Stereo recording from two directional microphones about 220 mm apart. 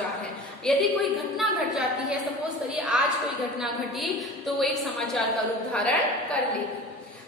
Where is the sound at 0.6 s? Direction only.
Centre (ahead or behind).